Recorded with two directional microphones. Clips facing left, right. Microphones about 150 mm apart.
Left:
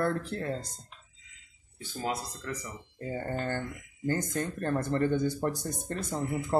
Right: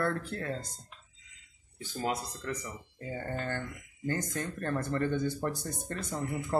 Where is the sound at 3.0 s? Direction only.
35° left (ahead or behind).